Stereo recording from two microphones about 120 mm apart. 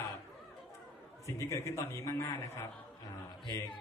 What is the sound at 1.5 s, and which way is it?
Music, 25° left (ahead or behind).